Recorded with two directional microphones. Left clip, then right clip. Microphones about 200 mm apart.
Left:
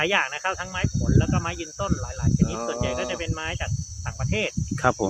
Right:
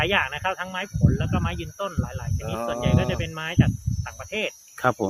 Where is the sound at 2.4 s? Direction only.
65° right (ahead or behind).